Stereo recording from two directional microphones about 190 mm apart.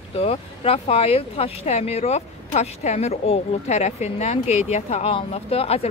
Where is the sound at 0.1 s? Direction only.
30° left (ahead or behind).